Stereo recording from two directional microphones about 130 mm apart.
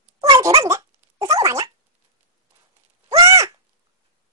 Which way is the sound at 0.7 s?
20° right (ahead or behind).